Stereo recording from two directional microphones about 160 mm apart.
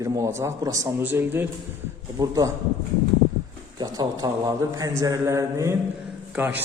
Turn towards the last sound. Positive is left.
turn(degrees=-10)  # may be behind; listen again after turning